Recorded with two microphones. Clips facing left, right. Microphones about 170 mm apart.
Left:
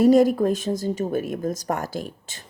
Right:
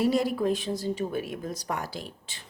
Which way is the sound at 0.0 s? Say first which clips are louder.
Left 9 dB; 45° left (ahead or behind).